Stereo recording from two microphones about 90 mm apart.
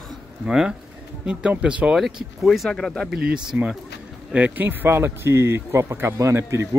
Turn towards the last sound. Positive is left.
turn(degrees=-30)  # may be behind; listen again after turning